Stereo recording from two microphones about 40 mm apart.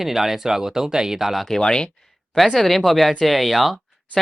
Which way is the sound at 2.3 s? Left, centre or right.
Centre.